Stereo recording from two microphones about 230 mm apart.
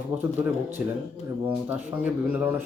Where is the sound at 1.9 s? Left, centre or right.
Centre.